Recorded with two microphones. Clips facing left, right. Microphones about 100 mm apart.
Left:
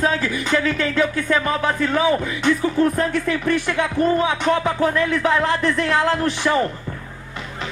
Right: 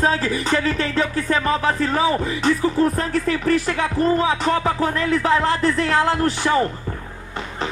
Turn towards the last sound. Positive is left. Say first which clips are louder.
# even
turn(degrees=-35)  # may be behind; listen again after turning